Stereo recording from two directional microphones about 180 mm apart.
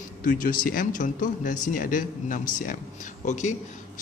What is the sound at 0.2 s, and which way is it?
A man's voice, 50° left (ahead or behind).